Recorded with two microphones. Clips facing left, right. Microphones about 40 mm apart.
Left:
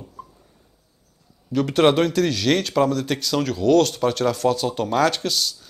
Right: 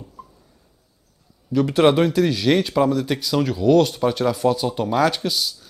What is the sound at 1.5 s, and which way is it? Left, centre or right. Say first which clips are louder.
Speech: right 1 dB; left.